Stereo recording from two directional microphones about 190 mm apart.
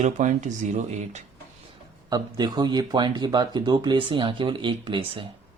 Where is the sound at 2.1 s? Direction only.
20° right (ahead or behind).